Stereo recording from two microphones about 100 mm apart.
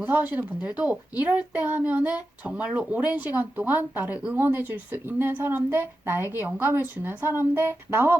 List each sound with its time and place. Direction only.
0.0 s a child's voice: 20° right (ahead or behind)